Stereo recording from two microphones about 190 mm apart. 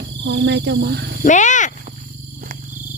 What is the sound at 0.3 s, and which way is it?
Speech, 65° right (ahead or behind).